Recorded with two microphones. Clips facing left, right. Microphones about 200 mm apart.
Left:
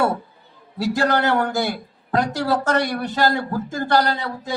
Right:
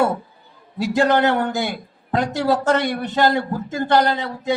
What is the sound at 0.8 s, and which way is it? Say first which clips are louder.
A man's voice: right 3 dB; 20° right (ahead or behind).